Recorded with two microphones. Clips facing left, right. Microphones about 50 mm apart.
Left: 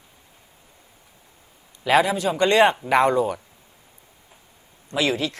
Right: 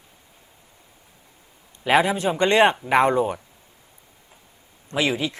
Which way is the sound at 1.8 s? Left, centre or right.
Right.